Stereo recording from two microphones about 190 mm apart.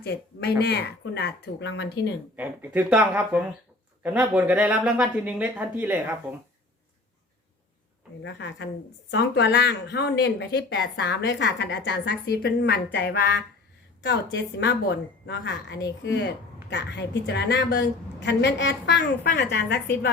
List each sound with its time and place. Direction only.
0.0 s a woman's voice: 55° left (ahead or behind)
2.3 s speech: 10° right (ahead or behind)
4.4 s speech: 5° right (ahead or behind)
8.2 s a woman's voice: 70° left (ahead or behind)
14.0 s a woman's voice: 70° left (ahead or behind)